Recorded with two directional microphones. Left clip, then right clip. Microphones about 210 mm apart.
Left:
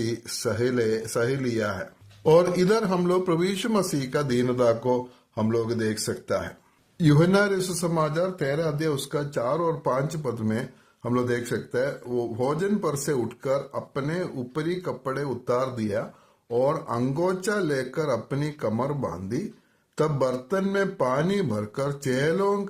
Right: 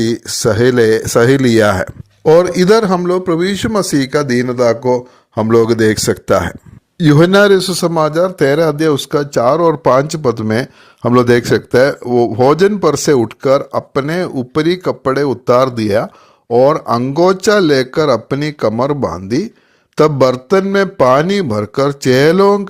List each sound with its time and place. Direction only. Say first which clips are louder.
0.0 s a man's voice: right 14 dB; 35° right (ahead or behind)
2.2 s a man's voice: right 10 dB; 35° right (ahead or behind)